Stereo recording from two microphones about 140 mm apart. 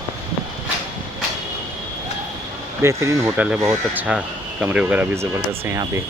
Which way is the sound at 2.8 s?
20° right (ahead or behind).